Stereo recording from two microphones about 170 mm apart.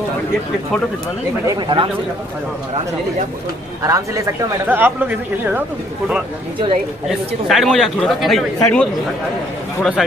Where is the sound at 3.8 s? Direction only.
20° right (ahead or behind).